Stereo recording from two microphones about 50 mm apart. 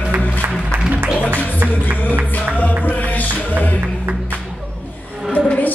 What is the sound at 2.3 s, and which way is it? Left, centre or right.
Music, left.